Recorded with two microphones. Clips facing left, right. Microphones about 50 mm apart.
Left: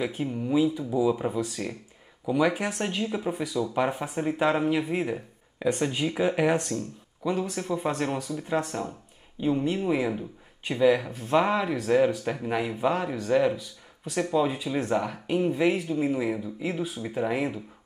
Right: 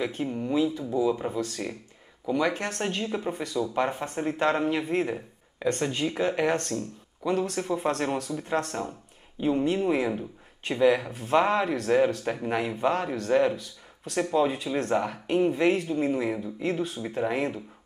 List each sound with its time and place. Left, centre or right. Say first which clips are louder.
0.0 s speech: even; centre